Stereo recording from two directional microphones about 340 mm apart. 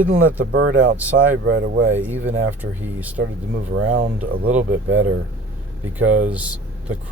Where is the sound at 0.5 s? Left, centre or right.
Right.